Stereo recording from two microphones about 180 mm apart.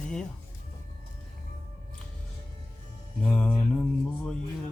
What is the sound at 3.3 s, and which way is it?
Speech, 5° left (ahead or behind).